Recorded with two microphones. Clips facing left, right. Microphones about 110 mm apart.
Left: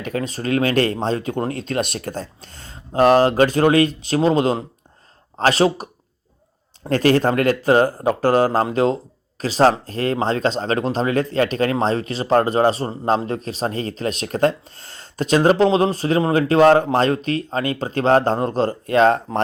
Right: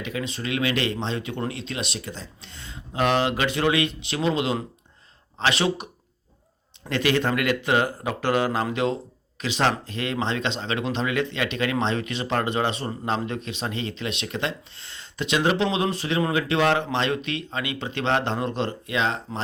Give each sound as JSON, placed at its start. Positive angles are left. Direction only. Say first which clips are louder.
{"t": 0.0, "sound": "speech", "louder": "left 6 dB", "side_deg": 45}